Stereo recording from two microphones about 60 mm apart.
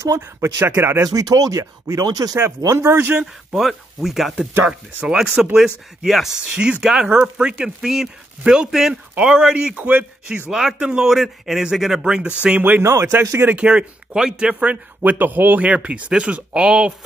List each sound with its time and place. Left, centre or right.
0.4 s speech: right
1.0 s speech: right
2.8 s speech: right
3.2 s speech: centre
4.6 s speech: centre
6.4 s speech: centre
9.1 s speech: right
9.4 s speech: centre
9.8 s speech: right
10.5 s speech: centre; by 12.8 s right
12.8 s speech: right
13.4 s speech: right
13.7 s speech: centre
15.0 s speech: right; by 16.9 s centre